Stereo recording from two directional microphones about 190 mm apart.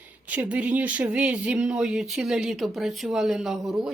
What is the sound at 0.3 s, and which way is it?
Speech, 5° right (ahead or behind).